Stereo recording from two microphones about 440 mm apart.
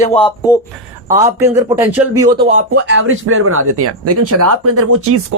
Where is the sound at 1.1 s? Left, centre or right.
Centre.